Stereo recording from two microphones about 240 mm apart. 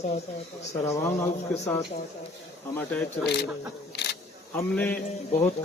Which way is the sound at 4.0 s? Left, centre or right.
Left.